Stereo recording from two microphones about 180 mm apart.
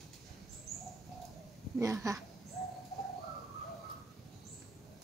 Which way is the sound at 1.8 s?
20° right (ahead or behind).